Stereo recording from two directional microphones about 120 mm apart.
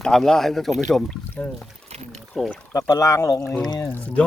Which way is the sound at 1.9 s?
60° right (ahead or behind).